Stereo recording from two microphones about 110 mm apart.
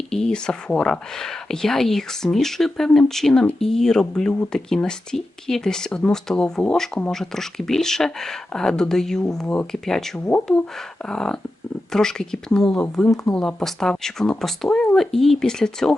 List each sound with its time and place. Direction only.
0.1 s speech: 5° left (ahead or behind)